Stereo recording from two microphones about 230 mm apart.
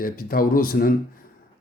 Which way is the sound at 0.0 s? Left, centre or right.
Left.